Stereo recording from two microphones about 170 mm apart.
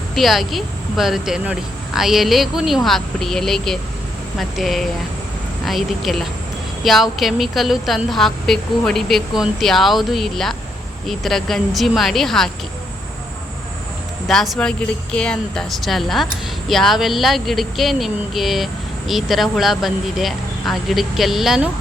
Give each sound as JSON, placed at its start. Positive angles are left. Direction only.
{"t": 0.1, "sound": "speech", "side_deg": 0}
{"t": 14.3, "sound": "speech", "side_deg": 0}